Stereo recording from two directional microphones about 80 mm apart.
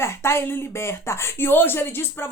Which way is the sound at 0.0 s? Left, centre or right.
Left.